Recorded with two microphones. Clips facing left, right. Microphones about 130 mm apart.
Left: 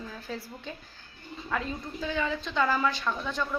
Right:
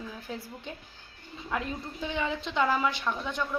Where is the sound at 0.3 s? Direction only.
15° right (ahead or behind).